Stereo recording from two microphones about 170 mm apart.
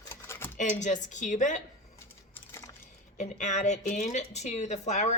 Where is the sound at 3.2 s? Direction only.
45° left (ahead or behind).